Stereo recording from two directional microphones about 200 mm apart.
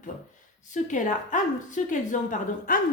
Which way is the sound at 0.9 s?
40° left (ahead or behind).